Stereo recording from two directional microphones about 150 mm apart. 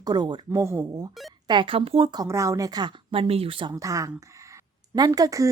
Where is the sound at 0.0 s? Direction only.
25° right (ahead or behind).